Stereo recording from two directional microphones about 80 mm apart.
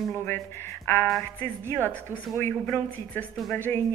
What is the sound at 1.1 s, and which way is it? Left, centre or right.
Speech, left.